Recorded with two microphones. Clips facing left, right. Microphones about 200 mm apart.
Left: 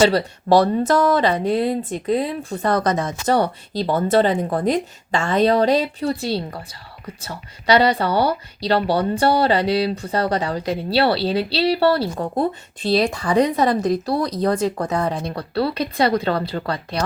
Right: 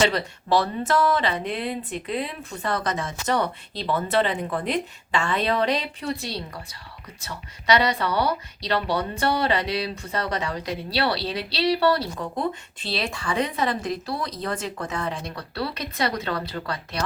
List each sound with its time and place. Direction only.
0.0 s speech: 35° left (ahead or behind)